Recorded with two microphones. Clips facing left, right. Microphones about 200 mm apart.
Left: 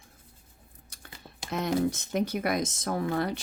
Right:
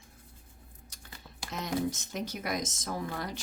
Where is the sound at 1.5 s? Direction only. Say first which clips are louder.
Left 5 dB; 60° left (ahead or behind).